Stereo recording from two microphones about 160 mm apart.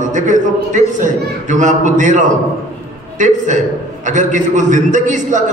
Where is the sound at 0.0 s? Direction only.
50° right (ahead or behind).